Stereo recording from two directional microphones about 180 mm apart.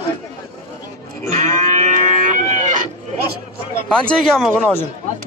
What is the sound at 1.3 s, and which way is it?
Cattle, 40° right (ahead or behind).